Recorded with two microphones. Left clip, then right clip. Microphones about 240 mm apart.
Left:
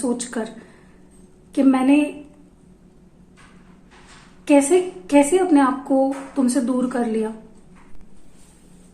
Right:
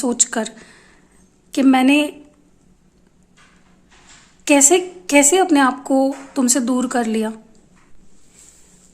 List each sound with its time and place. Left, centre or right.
0.0 s a woman's voice: right
1.5 s a woman's voice: right
4.4 s a woman's voice: right